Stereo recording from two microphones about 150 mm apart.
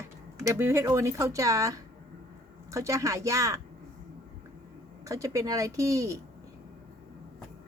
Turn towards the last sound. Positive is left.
turn(degrees=-20)  # may be behind; listen again after turning